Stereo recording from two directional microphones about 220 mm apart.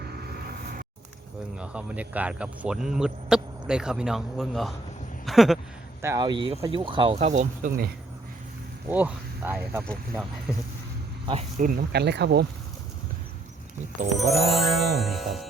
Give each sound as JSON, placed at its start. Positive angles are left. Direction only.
{"t": 1.5, "sound": "speech", "side_deg": -5}
{"t": 5.2, "sound": "a sound", "side_deg": 0}
{"t": 6.0, "sound": "speech", "side_deg": -15}
{"t": 8.9, "sound": "speech", "side_deg": -5}
{"t": 9.8, "sound": "speech", "side_deg": 5}
{"t": 11.6, "sound": "speech", "side_deg": -45}
{"t": 14.1, "sound": "speech", "side_deg": 0}